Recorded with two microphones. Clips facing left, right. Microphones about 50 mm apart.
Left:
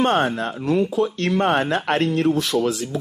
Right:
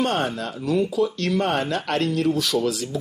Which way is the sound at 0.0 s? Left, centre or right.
Left.